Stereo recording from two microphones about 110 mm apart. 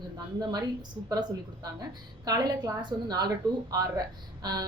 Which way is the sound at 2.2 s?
40° right (ahead or behind).